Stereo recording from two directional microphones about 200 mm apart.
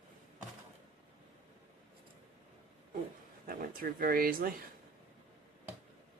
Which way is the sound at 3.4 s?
45° right (ahead or behind).